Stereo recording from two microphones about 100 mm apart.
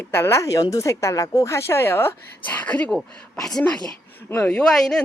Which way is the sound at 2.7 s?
10° left (ahead or behind).